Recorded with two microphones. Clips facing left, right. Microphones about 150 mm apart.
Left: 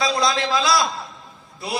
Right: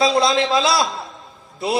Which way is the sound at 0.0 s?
25° right (ahead or behind).